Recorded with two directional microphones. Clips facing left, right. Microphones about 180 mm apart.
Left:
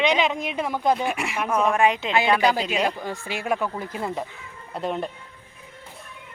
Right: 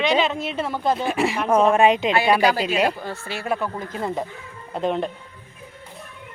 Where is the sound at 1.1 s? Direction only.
30° right (ahead or behind); by 3.0 s 10° right (ahead or behind).